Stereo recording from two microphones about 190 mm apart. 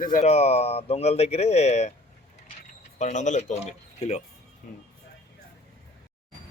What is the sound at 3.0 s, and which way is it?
Speech, 40° left (ahead or behind).